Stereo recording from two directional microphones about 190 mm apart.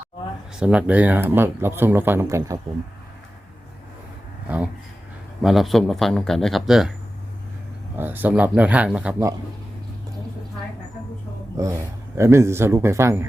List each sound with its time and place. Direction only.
0.6 s speech: 5° right (ahead or behind)
4.4 s a man's voice: 5° right (ahead or behind)
7.9 s speech: 10° right (ahead or behind)
11.5 s speech: 15° right (ahead or behind)